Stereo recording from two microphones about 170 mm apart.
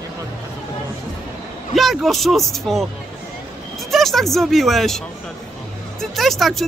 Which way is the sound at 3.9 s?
Centre (ahead or behind).